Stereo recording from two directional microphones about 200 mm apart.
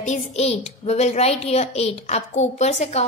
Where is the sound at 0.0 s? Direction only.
35° left (ahead or behind).